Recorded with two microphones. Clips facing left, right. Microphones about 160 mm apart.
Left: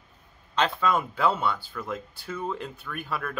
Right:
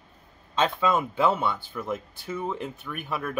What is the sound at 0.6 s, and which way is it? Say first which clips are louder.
Speech: right 1 dB; 20° right (ahead or behind).